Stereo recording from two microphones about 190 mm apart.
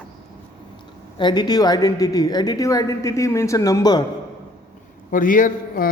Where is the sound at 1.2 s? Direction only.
25° left (ahead or behind).